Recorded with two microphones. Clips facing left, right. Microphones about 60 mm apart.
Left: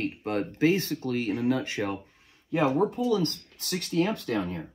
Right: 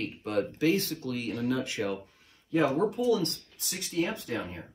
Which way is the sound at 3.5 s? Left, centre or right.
Left.